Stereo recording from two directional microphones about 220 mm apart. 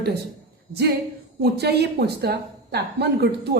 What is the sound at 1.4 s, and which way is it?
Speech, 50° right (ahead or behind).